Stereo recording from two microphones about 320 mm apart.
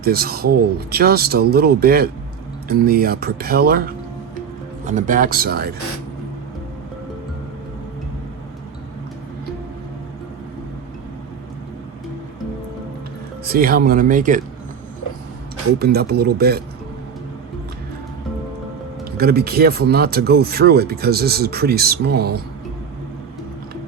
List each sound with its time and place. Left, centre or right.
0.0 s speech: right
13.4 s speech: right
15.8 s speech: right
19.1 s speech: right